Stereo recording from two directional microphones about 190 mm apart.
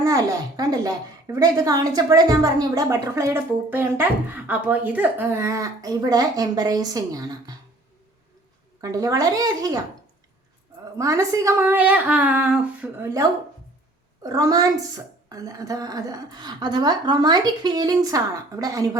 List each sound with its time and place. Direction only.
0.0 s a woman's voice: 20° right (ahead or behind)
8.8 s a woman's voice: 20° right (ahead or behind)
10.9 s a woman's voice: 15° right (ahead or behind)